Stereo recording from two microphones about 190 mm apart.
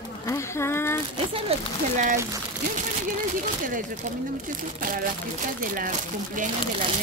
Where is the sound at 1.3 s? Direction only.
30° right (ahead or behind).